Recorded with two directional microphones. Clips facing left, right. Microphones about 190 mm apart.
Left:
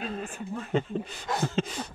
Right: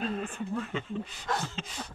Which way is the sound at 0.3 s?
40° left (ahead or behind).